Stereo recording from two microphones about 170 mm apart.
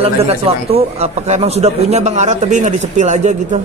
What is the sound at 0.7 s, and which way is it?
Speech, 35° right (ahead or behind).